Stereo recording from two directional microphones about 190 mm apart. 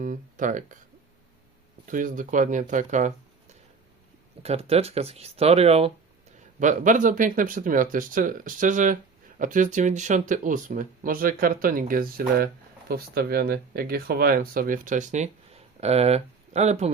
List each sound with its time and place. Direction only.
0.0 s speech: 40° right (ahead or behind)
1.9 s speech: 45° right (ahead or behind)